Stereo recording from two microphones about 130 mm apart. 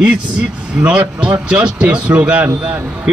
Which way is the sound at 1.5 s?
5° right (ahead or behind).